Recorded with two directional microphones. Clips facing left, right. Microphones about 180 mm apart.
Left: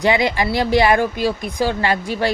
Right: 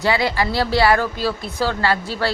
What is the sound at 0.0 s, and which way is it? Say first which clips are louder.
A woman's voice: left 2 dB; 20° left (ahead or behind).